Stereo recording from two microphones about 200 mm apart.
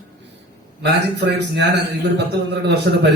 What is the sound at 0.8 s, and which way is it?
A man's voice, 60° right (ahead or behind).